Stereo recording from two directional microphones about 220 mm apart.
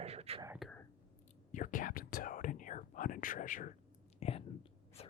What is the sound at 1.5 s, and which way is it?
Whispering, 35° left (ahead or behind).